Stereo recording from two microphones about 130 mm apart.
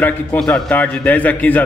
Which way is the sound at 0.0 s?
10° left (ahead or behind).